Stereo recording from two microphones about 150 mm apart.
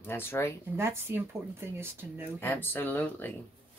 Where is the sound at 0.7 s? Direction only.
15° right (ahead or behind).